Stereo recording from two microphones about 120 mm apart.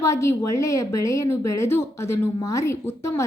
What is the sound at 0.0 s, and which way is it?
A woman's voice, 25° left (ahead or behind).